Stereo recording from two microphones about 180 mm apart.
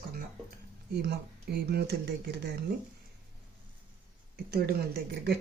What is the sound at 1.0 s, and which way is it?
Speech, 65° right (ahead or behind).